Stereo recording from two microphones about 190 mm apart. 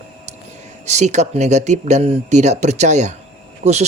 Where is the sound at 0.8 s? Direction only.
35° right (ahead or behind).